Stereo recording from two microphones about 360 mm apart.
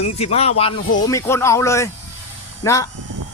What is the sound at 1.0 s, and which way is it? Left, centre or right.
Speech, centre.